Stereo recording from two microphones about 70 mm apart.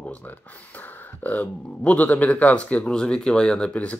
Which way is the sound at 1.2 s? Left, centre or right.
Left.